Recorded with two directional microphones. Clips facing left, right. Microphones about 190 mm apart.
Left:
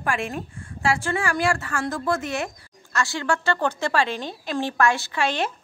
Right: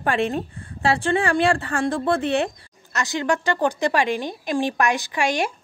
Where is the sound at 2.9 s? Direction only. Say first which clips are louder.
Right 2 dB; 20° right (ahead or behind).